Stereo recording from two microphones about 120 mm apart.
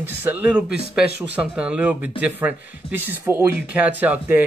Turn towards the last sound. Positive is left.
turn(degrees=-10)  # may be behind; listen again after turning